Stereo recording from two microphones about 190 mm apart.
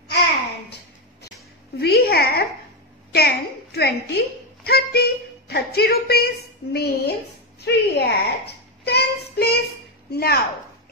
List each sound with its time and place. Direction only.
1.8 s a woman's voice: 55° left (ahead or behind)